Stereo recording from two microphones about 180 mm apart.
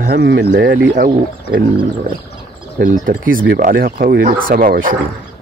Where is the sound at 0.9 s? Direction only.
55° right (ahead or behind).